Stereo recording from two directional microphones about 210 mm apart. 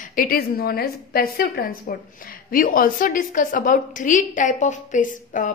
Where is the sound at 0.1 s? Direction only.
40° left (ahead or behind).